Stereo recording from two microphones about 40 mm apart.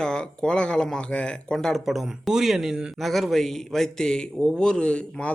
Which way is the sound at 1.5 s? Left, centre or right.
Centre.